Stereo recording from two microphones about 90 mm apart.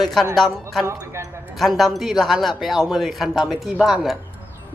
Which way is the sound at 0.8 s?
30° right (ahead or behind).